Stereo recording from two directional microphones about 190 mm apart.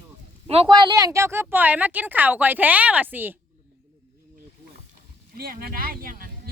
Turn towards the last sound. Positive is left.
turn(degrees=-50)  # may be behind; listen again after turning